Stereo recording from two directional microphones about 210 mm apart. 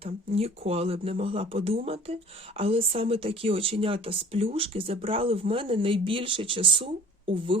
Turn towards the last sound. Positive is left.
turn(degrees=-25)  # may be behind; listen again after turning